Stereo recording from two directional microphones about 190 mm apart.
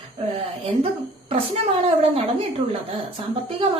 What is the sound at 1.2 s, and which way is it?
Speech, 30° right (ahead or behind).